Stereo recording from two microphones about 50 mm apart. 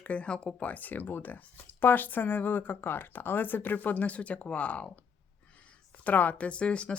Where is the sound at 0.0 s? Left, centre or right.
Left.